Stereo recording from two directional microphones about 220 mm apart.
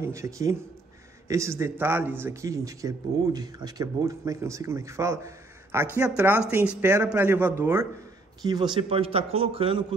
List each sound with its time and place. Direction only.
0.0 s a man's voice: 15° right (ahead or behind)